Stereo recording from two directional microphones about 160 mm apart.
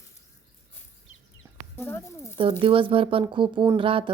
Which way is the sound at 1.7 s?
15° left (ahead or behind).